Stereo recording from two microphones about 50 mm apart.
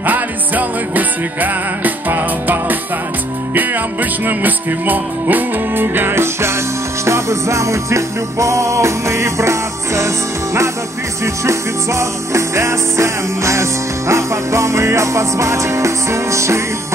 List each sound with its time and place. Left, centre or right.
0.0 s music: right
7.1 s music: right